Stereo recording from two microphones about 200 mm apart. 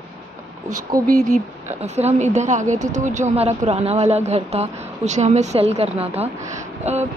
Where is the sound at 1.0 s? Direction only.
45° right (ahead or behind).